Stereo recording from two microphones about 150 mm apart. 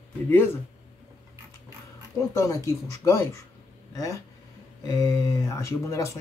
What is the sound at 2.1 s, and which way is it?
Speech, 20° left (ahead or behind).